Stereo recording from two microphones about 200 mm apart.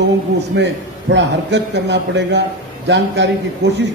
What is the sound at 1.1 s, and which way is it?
A man's voice, 60° right (ahead or behind).